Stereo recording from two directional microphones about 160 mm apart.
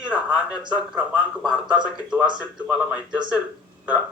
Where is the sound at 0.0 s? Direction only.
5° right (ahead or behind).